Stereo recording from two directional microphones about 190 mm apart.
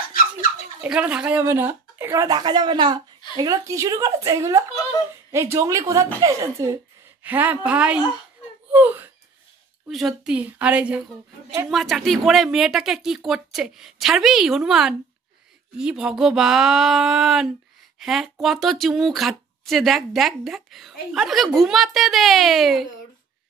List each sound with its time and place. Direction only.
0.7 s speech: 5° right (ahead or behind)